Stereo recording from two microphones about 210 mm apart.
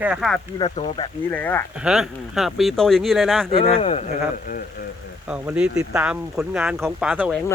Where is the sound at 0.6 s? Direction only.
25° left (ahead or behind).